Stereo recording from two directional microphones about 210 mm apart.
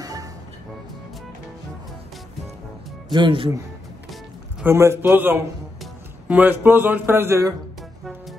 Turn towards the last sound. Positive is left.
turn(degrees=-15)  # may be behind; listen again after turning